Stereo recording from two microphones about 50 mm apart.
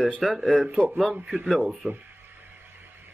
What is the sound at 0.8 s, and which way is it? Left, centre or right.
Speech, centre.